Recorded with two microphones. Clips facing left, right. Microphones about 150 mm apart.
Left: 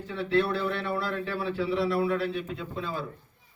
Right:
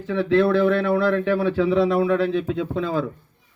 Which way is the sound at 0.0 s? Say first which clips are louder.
Right 8 dB; 90° right.